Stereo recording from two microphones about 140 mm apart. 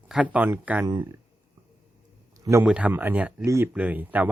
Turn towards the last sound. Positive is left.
turn(degrees=-10)  # may be behind; listen again after turning